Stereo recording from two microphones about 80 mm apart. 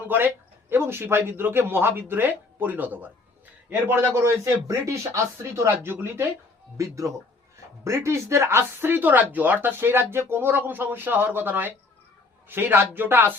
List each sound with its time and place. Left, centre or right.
0.1 s a man's voice: right
6.7 s speech: right